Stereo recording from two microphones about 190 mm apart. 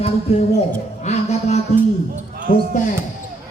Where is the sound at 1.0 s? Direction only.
35° left (ahead or behind).